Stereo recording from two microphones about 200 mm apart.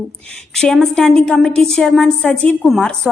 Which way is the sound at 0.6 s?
5° left (ahead or behind).